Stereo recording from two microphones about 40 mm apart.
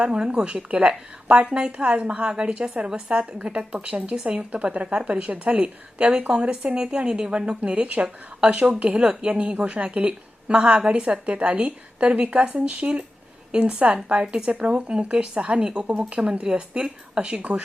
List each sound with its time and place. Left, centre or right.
0.0 s a woman's voice: right